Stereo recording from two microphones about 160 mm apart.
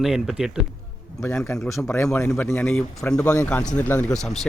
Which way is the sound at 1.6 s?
Centre (ahead or behind).